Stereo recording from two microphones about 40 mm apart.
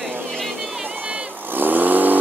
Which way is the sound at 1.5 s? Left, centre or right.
Right.